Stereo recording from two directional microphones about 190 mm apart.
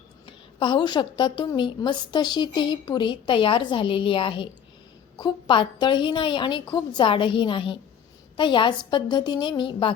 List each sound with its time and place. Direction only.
0.3 s a woman's voice: 25° left (ahead or behind)